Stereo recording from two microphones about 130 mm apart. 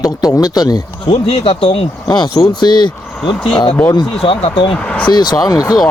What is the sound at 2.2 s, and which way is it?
Speech, 35° left (ahead or behind).